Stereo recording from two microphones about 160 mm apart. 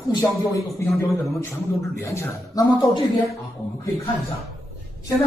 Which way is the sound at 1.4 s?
15° left (ahead or behind).